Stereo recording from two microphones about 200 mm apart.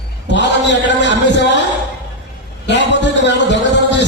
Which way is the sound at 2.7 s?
60° left (ahead or behind).